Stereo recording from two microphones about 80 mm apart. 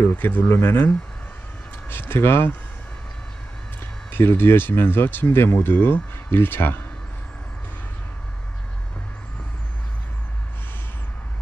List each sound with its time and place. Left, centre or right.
0.0 s speech: left
4.1 s speech: left